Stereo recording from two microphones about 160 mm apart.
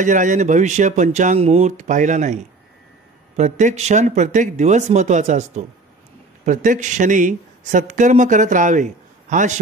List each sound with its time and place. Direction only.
0.0 s speech: 50° right (ahead or behind)